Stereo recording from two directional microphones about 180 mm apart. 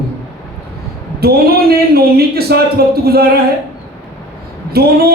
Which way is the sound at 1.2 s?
60° right (ahead or behind).